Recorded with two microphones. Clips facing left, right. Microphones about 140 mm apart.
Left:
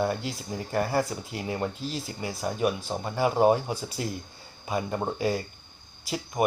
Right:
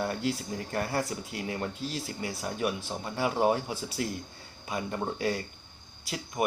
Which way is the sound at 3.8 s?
Centre (ahead or behind).